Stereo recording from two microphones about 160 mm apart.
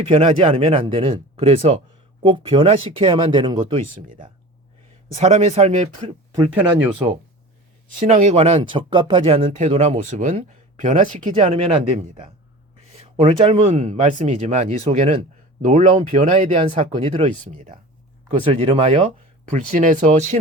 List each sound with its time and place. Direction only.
0.0 s speech: 35° right (ahead or behind)
5.1 s speech: 45° right (ahead or behind)
6.5 s speech: 10° right (ahead or behind)
8.0 s speech: 45° right (ahead or behind)
18.3 s speech: 35° right (ahead or behind)